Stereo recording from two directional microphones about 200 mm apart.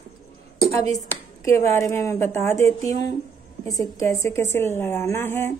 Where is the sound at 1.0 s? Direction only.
10° left (ahead or behind).